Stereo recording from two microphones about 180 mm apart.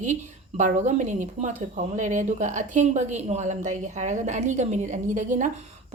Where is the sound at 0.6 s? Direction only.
40° right (ahead or behind).